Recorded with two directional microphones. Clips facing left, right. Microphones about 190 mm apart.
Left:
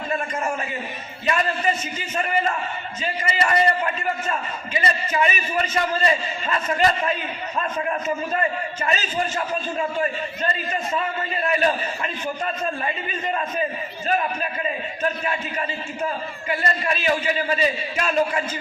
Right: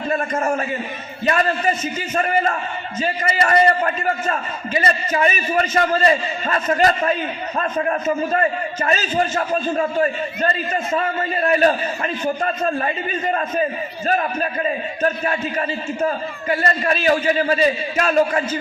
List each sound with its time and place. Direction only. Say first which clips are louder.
0.1 s a man's voice: right 5 dB; 40° right (ahead or behind)